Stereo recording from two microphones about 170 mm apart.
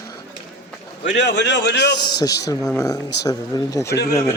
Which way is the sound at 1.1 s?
90° left.